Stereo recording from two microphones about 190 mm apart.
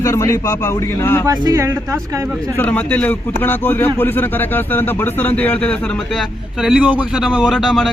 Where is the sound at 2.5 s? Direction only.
10° left (ahead or behind).